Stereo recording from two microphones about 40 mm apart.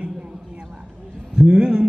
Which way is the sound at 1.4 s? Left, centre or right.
Right.